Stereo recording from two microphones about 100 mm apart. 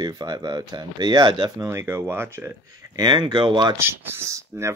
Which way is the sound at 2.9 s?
45° right (ahead or behind).